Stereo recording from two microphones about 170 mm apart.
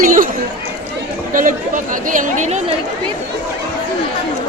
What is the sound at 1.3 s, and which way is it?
Speech, 50° right (ahead or behind).